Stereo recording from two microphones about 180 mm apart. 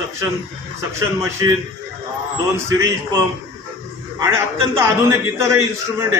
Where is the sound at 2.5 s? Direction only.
15° right (ahead or behind).